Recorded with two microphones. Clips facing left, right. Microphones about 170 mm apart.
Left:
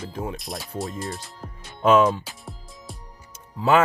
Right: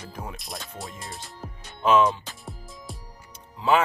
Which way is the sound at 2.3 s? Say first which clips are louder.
Even; centre (ahead or behind).